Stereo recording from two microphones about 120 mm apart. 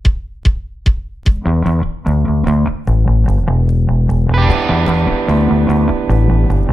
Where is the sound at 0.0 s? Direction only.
Centre (ahead or behind).